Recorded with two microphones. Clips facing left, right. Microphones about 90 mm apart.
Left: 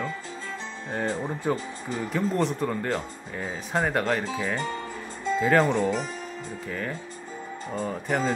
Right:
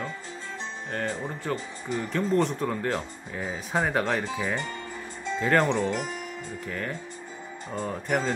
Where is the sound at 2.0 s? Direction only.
5° left (ahead or behind).